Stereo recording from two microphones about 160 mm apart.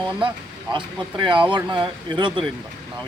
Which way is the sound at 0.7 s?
30° right (ahead or behind).